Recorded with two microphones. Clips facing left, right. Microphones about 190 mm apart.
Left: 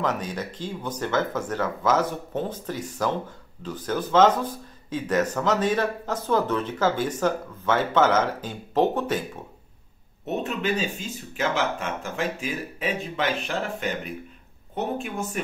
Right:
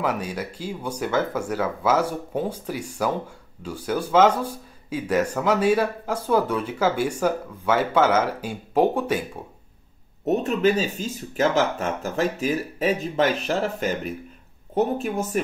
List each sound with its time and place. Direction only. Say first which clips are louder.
0.0 s speech: right 1 dB; 10° right (ahead or behind)
10.2 s speech: right 7 dB; 40° right (ahead or behind)
15.3 s speech: right 6 dB; 40° right (ahead or behind)